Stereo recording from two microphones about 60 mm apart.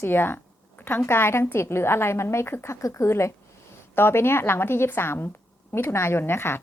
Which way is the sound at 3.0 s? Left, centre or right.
Left.